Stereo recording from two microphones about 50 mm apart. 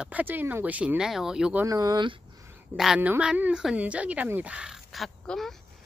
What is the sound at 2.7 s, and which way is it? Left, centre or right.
Speech, right.